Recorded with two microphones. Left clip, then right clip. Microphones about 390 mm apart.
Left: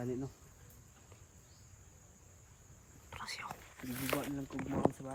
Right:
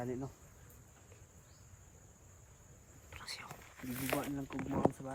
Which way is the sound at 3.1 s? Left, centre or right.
Centre.